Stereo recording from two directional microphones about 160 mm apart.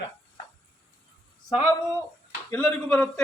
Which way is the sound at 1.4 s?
25° left (ahead or behind).